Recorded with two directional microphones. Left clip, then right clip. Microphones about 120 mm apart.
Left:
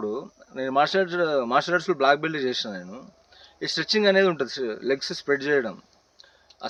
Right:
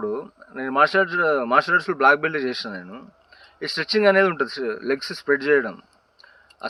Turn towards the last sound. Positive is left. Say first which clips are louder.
# right 4 dB
turn(degrees=55)  # may be behind; listen again after turning